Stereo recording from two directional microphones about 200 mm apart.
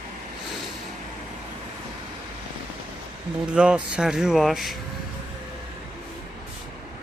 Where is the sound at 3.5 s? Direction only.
5° right (ahead or behind).